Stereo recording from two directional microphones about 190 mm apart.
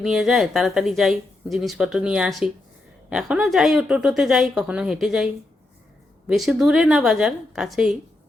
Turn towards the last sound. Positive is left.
turn(degrees=-5)  # may be behind; listen again after turning